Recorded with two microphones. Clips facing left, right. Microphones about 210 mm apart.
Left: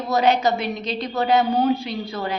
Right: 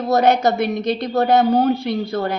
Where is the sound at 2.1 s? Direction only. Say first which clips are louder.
Right 5 dB; 50° right (ahead or behind).